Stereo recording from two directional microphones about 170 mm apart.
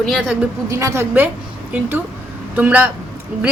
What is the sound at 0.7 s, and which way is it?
Speech, 15° right (ahead or behind).